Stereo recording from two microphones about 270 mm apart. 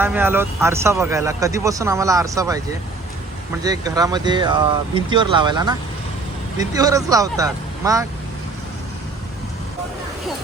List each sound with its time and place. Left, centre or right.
0.0 s speech: centre
3.6 s speech: centre